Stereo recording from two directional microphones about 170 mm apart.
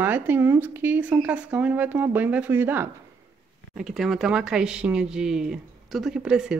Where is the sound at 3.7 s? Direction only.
Centre (ahead or behind).